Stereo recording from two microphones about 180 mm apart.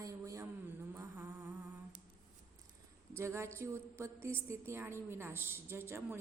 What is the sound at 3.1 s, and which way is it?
Mantra, 15° right (ahead or behind).